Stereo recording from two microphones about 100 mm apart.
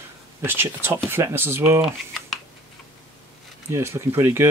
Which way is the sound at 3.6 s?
25° right (ahead or behind).